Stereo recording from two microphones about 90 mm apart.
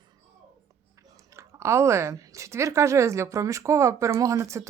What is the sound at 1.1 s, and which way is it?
A woman's voice, 30° right (ahead or behind).